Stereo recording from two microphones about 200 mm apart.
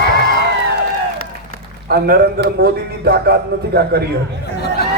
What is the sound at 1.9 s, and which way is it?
A man's voice, 50° right (ahead or behind).